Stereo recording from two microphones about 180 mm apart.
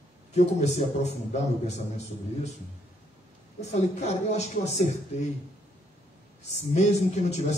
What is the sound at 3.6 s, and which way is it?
A man's voice, 40° left (ahead or behind).